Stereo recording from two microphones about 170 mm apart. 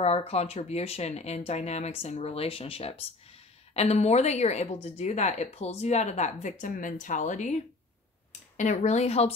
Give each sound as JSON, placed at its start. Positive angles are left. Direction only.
{"t": 0.0, "sound": "a woman's voice", "side_deg": 40}